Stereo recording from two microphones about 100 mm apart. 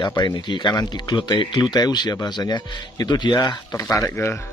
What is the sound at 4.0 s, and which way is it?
Speech, 25° left (ahead or behind).